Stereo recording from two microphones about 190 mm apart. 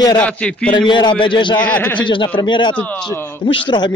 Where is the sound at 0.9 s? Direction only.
25° left (ahead or behind).